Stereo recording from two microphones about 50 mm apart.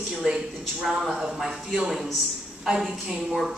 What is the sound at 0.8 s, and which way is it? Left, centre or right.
A man's voice, centre.